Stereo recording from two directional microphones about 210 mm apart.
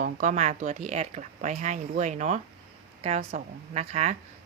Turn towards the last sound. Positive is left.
turn(degrees=-35)  # may be behind; listen again after turning